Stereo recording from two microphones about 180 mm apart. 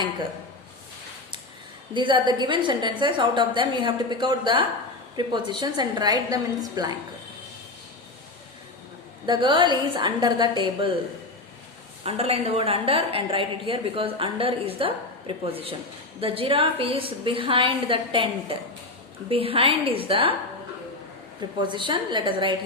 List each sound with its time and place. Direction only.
1.9 s a woman's voice: 25° right (ahead or behind)
9.2 s a woman's voice: 25° right (ahead or behind)
12.0 s a woman's voice: 35° right (ahead or behind)
21.6 s a woman's voice: 25° right (ahead or behind)